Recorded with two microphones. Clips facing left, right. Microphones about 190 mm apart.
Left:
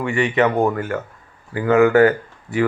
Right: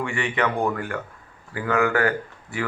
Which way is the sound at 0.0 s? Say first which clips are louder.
Left 7 dB; 20° left (ahead or behind).